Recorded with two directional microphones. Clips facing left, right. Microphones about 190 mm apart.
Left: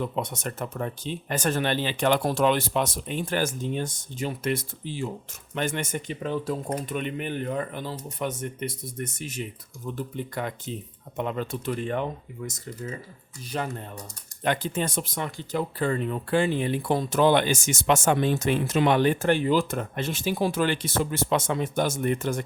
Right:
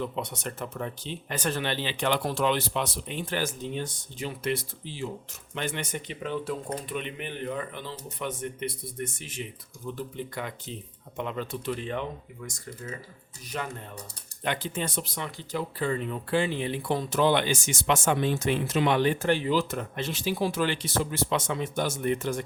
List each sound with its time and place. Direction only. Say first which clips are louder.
0.0 s speech: left 3 dB; 45° left (ahead or behind)
11.2 s speech: left 3 dB; 45° left (ahead or behind)
12.5 s speech: left 3 dB; 25° left (ahead or behind)
14.4 s speech: left 4 dB; 45° left (ahead or behind)